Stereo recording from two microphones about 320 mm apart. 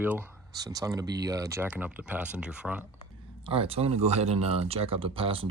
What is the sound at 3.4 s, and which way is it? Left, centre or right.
Speech, centre.